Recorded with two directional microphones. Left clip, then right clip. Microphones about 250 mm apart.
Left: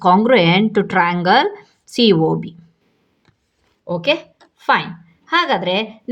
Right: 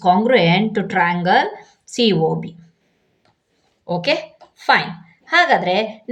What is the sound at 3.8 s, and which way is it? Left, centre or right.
A woman's voice, left.